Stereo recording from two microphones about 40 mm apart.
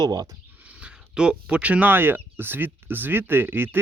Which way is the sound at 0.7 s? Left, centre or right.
Right.